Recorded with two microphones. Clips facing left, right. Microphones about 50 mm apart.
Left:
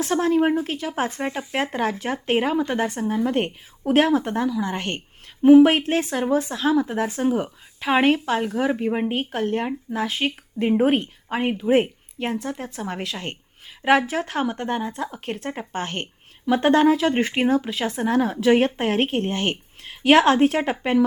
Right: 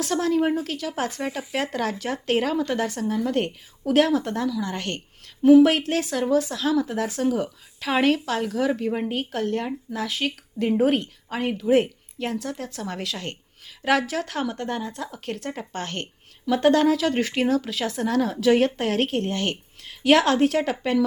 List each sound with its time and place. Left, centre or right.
0.0 s a woman's voice: left